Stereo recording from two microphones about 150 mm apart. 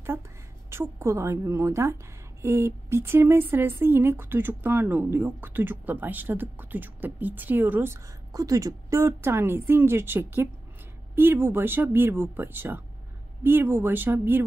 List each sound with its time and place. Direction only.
0.7 s a woman's voice: 20° right (ahead or behind)